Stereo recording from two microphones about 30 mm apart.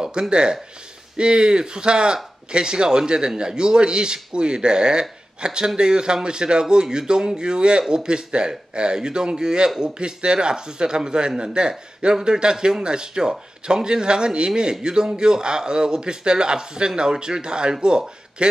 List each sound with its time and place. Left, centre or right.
0.0 s speech: right